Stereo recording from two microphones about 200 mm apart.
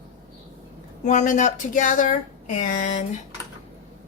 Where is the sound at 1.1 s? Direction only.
35° left (ahead or behind).